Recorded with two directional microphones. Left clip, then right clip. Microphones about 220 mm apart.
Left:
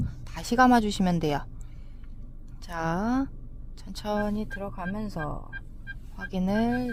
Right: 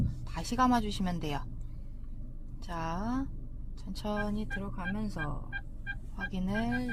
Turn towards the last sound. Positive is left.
turn(degrees=50)  # may be behind; listen again after turning